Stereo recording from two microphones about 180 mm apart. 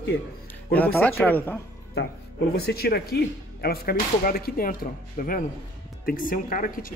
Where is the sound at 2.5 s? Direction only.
60° left (ahead or behind).